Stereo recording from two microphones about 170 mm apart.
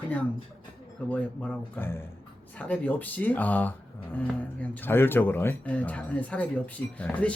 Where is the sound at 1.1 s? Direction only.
10° left (ahead or behind).